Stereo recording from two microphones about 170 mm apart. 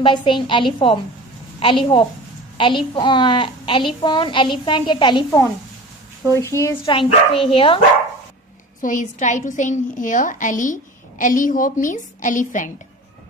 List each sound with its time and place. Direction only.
0.0 s a woman's voice: 30° left (ahead or behind)
6.3 s a woman's voice: 15° left (ahead or behind)
6.9 s speech: 30° left (ahead or behind)
8.8 s a woman's voice: 45° left (ahead or behind)